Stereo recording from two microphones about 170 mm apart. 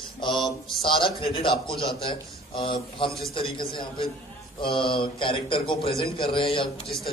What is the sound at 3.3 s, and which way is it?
Speech, 30° left (ahead or behind).